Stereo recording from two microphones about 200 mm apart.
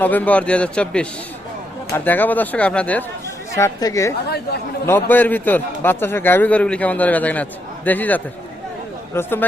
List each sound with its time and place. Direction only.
0.0 s a man's voice: 10° left (ahead or behind)